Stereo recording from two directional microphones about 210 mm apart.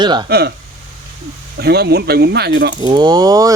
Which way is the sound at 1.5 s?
50° right (ahead or behind).